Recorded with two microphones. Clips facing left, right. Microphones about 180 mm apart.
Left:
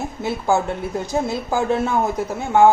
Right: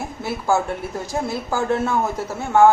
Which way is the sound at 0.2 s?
20° left (ahead or behind).